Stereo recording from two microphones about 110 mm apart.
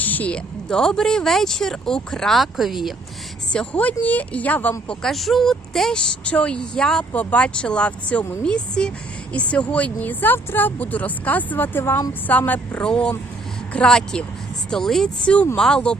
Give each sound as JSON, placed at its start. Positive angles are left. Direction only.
{"t": 0.0, "sound": "speech", "side_deg": 15}
{"t": 3.5, "sound": "a woman's voice", "side_deg": 10}
{"t": 4.9, "sound": "a woman's voice", "side_deg": 5}